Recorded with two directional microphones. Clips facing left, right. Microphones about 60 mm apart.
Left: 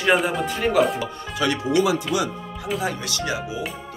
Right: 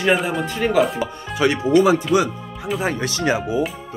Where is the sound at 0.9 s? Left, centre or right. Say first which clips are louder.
Right 3 dB; right.